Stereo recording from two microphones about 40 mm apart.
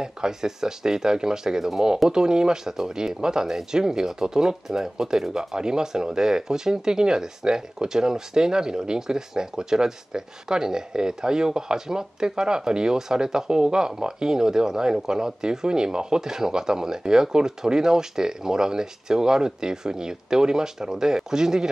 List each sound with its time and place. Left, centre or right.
0.0 s speech: centre